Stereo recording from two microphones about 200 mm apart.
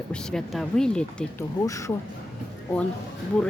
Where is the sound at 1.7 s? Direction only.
15° left (ahead or behind).